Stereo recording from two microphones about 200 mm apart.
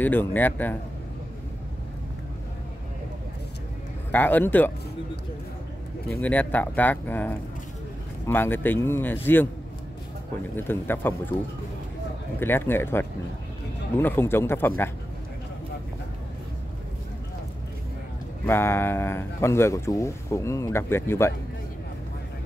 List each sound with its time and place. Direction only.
0.0 s speech: 10° left (ahead or behind)
4.1 s speech: 10° left (ahead or behind)
6.2 s speech: 10° left (ahead or behind)
10.5 s speech: 10° left (ahead or behind)
12.4 s speech: 10° left (ahead or behind)
18.4 s speech: 10° left (ahead or behind)